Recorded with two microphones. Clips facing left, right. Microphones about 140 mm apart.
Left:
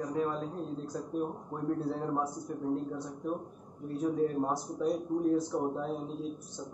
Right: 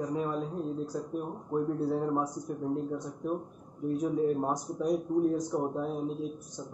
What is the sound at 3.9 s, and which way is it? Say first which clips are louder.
Speech: right 1 dB; 15° right (ahead or behind).